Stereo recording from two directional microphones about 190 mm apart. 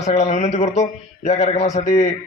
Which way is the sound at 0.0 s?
35° left (ahead or behind).